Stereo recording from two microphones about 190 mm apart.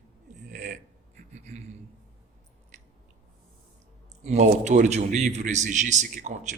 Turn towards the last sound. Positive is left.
turn(degrees=-40)  # may be behind; listen again after turning